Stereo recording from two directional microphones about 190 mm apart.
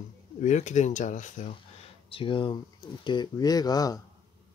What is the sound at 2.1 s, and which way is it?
Speech, 25° left (ahead or behind).